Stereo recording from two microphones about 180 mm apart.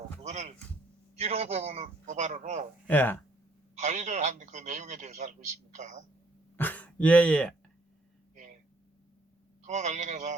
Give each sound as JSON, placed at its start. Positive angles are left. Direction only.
{"t": 0.2, "sound": "heart sounds", "side_deg": -40}
{"t": 1.2, "sound": "a man's voice", "side_deg": -35}
{"t": 2.8, "sound": "speech", "side_deg": 10}
{"t": 3.8, "sound": "a man's voice", "side_deg": -40}
{"t": 6.6, "sound": "speech", "side_deg": 10}
{"t": 9.6, "sound": "a man's voice", "side_deg": -40}